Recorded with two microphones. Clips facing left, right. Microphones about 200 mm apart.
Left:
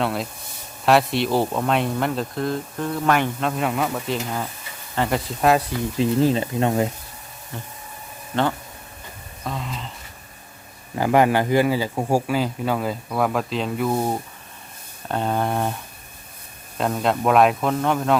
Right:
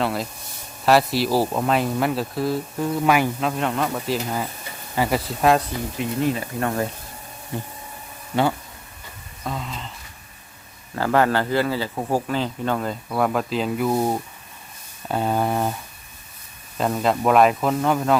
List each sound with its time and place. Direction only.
0.0 s speech: centre (ahead or behind)
6.0 s speech: 30° left (ahead or behind)
7.5 s a sound: 15° right (ahead or behind)
9.4 s speech: centre (ahead or behind)
10.9 s a man's voice: 15° left (ahead or behind); by 18.2 s centre (ahead or behind)